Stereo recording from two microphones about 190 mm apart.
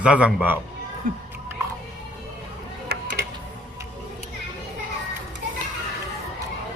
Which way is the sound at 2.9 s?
60° right (ahead or behind).